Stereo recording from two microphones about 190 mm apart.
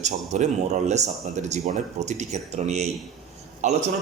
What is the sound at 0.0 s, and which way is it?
Speech, 40° right (ahead or behind).